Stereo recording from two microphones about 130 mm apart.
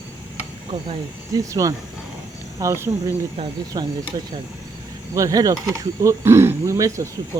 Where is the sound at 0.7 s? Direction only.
40° right (ahead or behind).